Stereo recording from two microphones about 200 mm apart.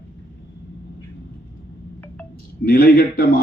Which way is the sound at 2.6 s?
50° left (ahead or behind).